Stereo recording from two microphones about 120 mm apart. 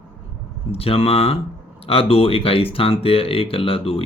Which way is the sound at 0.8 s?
55° left (ahead or behind).